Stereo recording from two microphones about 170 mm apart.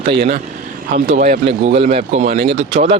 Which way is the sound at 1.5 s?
40° right (ahead or behind).